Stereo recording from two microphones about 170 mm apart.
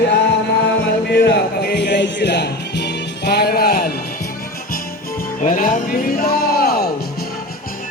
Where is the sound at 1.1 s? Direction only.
75° left (ahead or behind).